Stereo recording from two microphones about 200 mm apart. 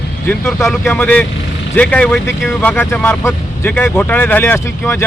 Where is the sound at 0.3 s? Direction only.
15° left (ahead or behind).